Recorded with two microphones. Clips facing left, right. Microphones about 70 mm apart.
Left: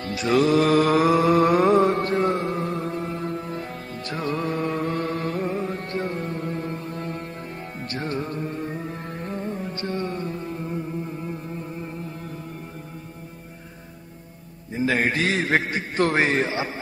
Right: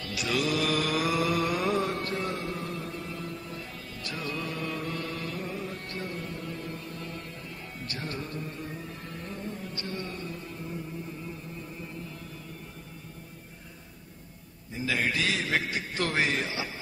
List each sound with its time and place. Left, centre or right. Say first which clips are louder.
0.0 s mantra: left 9 dB; left
7.8 s music: left 8 dB; left
14.7 s a sound: left 7 dB; left